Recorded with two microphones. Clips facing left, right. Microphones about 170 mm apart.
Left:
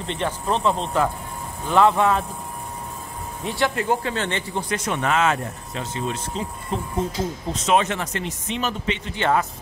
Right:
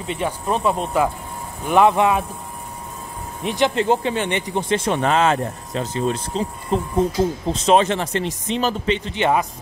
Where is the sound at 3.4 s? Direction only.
20° right (ahead or behind).